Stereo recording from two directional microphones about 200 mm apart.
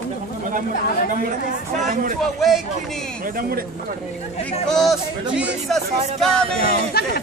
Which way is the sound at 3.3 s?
50° right (ahead or behind).